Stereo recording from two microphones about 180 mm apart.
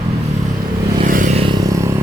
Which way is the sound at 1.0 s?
50° right (ahead or behind).